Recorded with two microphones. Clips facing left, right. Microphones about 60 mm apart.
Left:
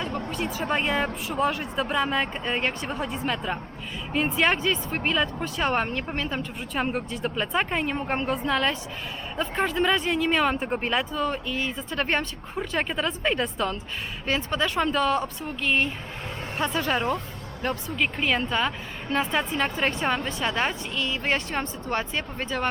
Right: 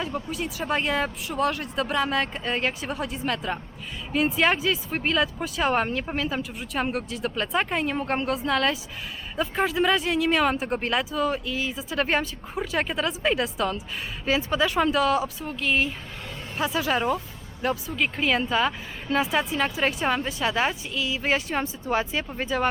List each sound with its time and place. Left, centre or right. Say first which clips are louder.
0.3 s a woman's voice: left 1 dB; centre